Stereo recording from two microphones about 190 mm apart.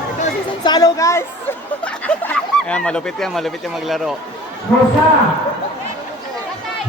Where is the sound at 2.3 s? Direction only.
5° left (ahead or behind).